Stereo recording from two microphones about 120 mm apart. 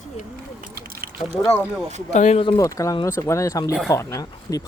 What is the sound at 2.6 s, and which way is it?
Speech, 25° left (ahead or behind).